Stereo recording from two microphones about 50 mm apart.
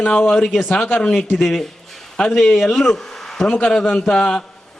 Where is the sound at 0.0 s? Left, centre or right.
Centre.